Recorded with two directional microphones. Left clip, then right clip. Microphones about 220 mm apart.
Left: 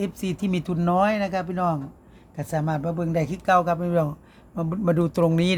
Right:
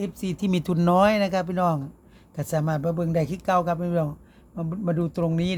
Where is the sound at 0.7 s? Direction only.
35° right (ahead or behind); by 4.1 s centre (ahead or behind).